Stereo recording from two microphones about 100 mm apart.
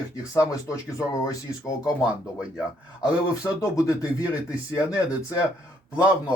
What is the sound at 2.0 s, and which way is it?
Speech, 10° right (ahead or behind).